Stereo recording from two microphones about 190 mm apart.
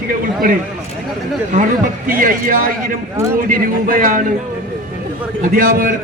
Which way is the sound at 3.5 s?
45° right (ahead or behind).